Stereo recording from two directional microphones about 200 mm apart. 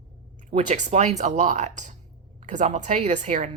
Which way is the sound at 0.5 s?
35° right (ahead or behind).